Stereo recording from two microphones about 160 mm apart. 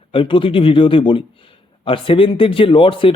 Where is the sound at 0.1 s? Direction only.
35° left (ahead or behind).